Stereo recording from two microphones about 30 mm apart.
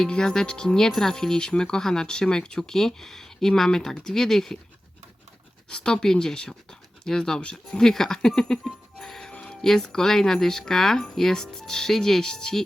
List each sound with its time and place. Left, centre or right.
0.2 s speech: left
2.6 s speech: centre
3.7 s speech: left
5.6 s speech: left
9.3 s a sound: left
9.6 s speech: centre